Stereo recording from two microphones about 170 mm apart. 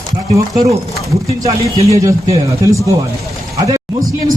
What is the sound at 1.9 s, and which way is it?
Speech, 20° right (ahead or behind).